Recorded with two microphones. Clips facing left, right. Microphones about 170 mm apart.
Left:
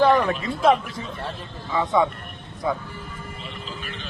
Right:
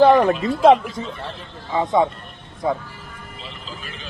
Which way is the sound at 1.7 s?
25° right (ahead or behind).